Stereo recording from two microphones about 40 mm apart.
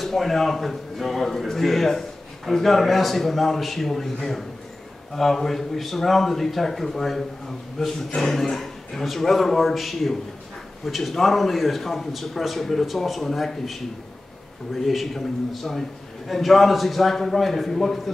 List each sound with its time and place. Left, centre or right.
0.0 s a man's voice: centre